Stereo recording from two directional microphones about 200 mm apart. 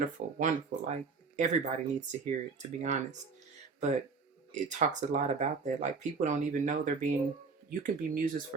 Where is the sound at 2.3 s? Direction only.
35° right (ahead or behind).